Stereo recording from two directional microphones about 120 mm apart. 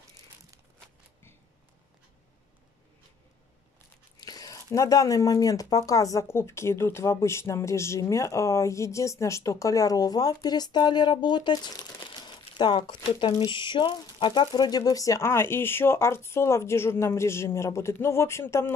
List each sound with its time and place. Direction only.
4.2 s speech: 30° left (ahead or behind)